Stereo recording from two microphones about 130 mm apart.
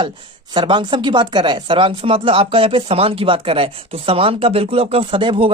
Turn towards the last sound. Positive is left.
turn(degrees=-40)  # may be behind; listen again after turning